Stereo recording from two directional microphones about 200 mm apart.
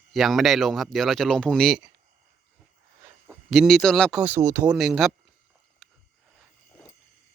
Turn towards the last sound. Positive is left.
turn(degrees=0)  # may be behind; listen again after turning